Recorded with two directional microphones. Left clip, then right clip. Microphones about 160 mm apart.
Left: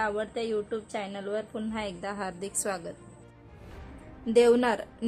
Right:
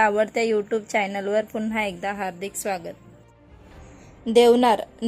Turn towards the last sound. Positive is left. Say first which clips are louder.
# right 8 dB
turn(degrees=-25)  # may be behind; listen again after turning